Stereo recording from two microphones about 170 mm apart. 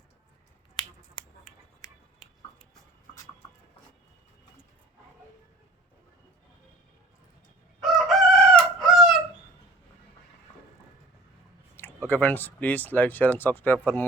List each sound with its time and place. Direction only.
0.8 s finger snapping: 25° left (ahead or behind)
7.8 s chicken: centre (ahead or behind)
11.8 s speech: 10° left (ahead or behind)